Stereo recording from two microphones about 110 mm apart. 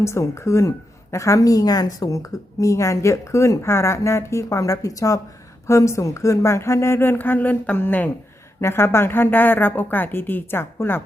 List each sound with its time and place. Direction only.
0.0 s a woman's voice: 25° left (ahead or behind)